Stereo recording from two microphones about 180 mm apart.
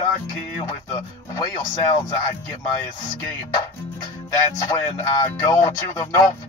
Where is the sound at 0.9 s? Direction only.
20° left (ahead or behind).